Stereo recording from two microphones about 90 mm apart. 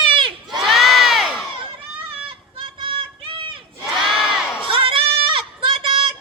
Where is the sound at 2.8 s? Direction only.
70° right (ahead or behind).